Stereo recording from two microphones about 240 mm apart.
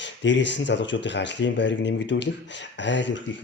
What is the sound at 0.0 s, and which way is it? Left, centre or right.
Speech, left.